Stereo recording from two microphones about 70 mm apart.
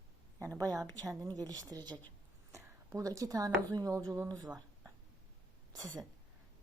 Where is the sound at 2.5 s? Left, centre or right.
Right.